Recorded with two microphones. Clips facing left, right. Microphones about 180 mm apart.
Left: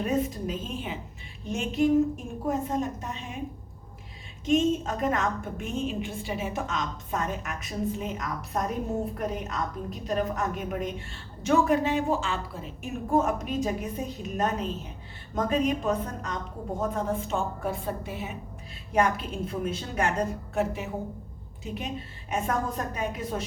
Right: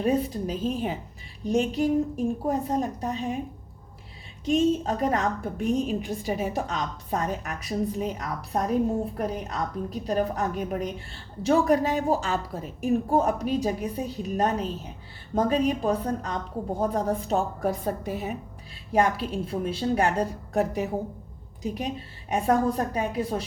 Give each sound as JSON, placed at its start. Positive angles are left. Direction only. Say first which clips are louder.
{"t": 0.0, "sound": "a woman's voice", "louder": "right 3 dB", "side_deg": -35}
{"t": 4.4, "sound": "a woman's voice", "louder": "right 1 dB", "side_deg": -35}